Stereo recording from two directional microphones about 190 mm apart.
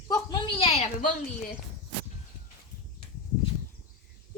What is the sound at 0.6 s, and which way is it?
Speech, 40° left (ahead or behind).